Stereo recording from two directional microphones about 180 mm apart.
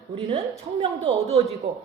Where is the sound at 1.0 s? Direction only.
35° right (ahead or behind).